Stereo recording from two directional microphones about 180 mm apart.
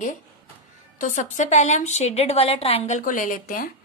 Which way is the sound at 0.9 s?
45° left (ahead or behind).